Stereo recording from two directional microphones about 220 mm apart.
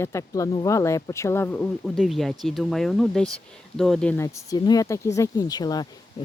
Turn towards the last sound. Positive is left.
turn(degrees=20)  # may be behind; listen again after turning